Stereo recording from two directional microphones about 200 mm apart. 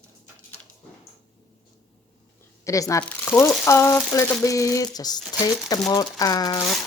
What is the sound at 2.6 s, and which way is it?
A woman's voice, 15° left (ahead or behind).